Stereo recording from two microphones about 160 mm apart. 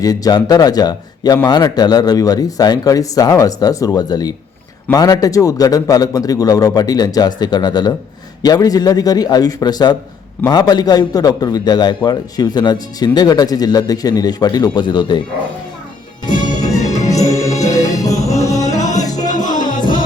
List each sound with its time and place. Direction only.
0.0 s speech: 25° left (ahead or behind)
16.3 s music: 50° left (ahead or behind)
17.1 s music: 20° left (ahead or behind)
19.3 s music: 55° left (ahead or behind)